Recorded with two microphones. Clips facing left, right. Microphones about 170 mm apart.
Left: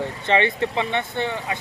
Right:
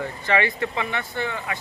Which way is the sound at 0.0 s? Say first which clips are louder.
Left 2 dB; 25° left (ahead or behind).